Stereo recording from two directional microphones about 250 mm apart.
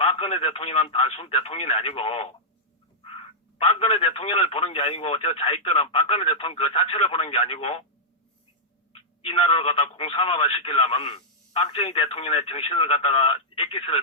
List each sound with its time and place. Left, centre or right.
0.0 s speech: left
9.2 s speech: left